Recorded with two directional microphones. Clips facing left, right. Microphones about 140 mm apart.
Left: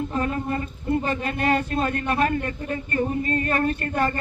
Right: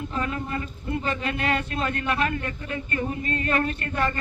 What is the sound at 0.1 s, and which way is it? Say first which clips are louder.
Speech: left 4 dB; 40° left (ahead or behind).